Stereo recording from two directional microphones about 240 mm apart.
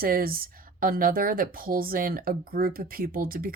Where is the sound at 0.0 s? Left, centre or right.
Right.